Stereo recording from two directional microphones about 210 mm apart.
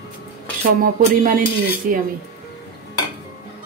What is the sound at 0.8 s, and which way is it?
Speech, 40° right (ahead or behind).